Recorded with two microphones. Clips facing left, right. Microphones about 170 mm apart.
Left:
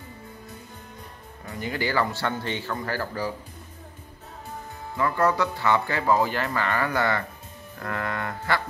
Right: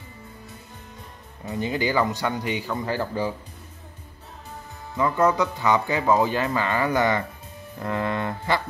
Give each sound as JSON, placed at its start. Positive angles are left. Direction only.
{"t": 1.4, "sound": "speech", "side_deg": -20}
{"t": 4.9, "sound": "speech", "side_deg": -20}